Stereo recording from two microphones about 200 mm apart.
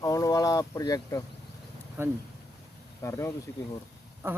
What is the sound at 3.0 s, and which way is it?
Speech, 15° left (ahead or behind).